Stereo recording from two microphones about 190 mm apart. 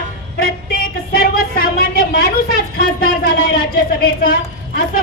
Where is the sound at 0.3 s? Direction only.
50° left (ahead or behind).